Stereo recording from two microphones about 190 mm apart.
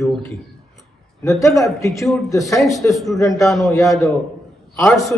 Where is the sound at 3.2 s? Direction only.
15° left (ahead or behind).